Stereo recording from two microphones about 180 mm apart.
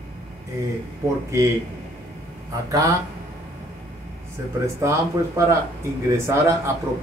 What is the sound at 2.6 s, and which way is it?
Speech, 20° right (ahead or behind).